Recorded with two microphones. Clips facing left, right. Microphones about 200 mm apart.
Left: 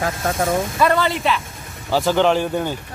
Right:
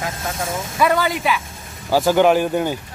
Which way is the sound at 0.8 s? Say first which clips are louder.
Right 3 dB; 10° right (ahead or behind).